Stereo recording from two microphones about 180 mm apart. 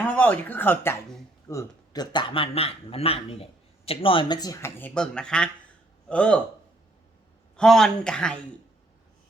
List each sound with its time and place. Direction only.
0.1 s a man's voice: 10° left (ahead or behind)
4.8 s speech: 5° left (ahead or behind)
7.5 s speech: 5° left (ahead or behind)